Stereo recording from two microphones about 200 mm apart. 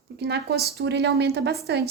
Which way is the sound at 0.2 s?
55° right (ahead or behind).